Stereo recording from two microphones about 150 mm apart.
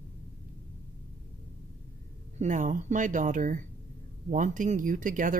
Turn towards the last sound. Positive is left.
turn(degrees=-60)  # may be behind; listen again after turning